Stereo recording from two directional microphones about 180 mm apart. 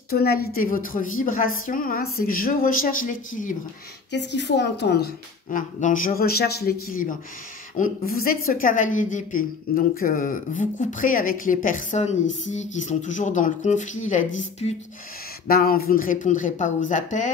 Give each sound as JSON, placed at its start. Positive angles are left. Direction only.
{"t": 0.1, "sound": "a woman's voice", "side_deg": 60}
{"t": 4.1, "sound": "a woman's voice", "side_deg": 75}
{"t": 15.4, "sound": "a woman's voice", "side_deg": 55}